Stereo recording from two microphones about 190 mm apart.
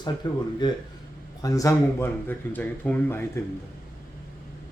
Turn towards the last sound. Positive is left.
turn(degrees=10)  # may be behind; listen again after turning